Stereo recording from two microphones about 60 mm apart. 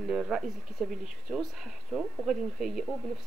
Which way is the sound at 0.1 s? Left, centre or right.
Centre.